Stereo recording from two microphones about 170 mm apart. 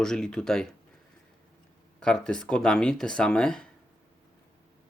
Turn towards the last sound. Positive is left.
turn(degrees=5)  # may be behind; listen again after turning